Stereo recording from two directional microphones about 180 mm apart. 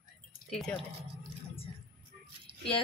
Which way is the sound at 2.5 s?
35° right (ahead or behind).